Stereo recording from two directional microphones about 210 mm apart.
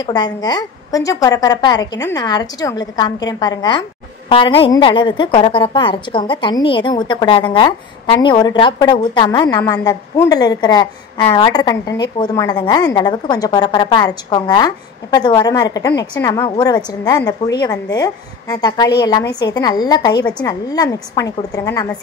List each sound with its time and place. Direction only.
0.0 s a woman's voice: 20° left (ahead or behind)